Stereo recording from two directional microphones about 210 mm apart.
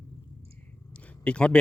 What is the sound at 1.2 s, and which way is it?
Speech, 5° left (ahead or behind).